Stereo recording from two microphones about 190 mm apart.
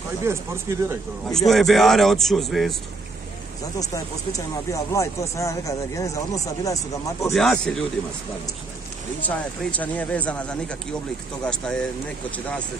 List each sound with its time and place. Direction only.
0.2 s speech: 15° right (ahead or behind)
1.3 s a man's voice: centre (ahead or behind)
3.9 s speech: 15° left (ahead or behind)
7.3 s a man's voice: 5° left (ahead or behind)
9.3 s a man's voice: 10° left (ahead or behind)